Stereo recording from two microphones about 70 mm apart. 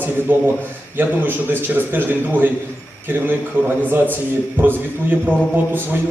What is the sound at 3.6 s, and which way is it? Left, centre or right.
A man's voice, right.